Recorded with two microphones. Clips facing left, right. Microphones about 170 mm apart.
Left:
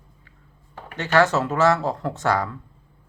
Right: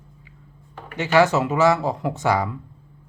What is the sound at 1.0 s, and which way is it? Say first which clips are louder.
Speech: right 2 dB; 5° right (ahead or behind).